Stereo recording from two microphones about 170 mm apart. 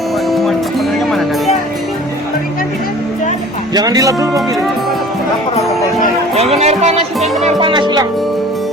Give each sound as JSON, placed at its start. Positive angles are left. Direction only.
{"t": 0.3, "sound": "music", "side_deg": 0}
{"t": 3.8, "sound": "speech", "side_deg": -20}
{"t": 6.3, "sound": "speech", "side_deg": -40}
{"t": 7.7, "sound": "speech", "side_deg": -25}